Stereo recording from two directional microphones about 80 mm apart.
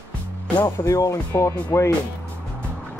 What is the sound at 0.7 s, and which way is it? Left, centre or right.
Speech, left.